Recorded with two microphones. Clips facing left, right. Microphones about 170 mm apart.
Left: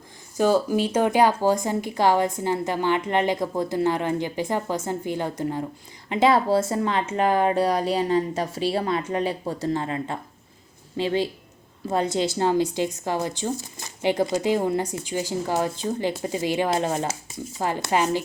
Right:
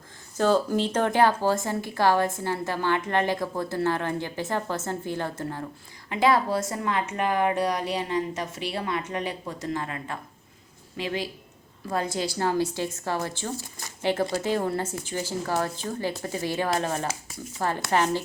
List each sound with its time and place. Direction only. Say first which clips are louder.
0.3 s a woman's voice: left 2 dB; 10° left (ahead or behind)